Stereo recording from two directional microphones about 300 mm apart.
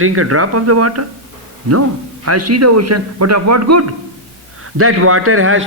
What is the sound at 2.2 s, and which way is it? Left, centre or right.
A man's voice, right.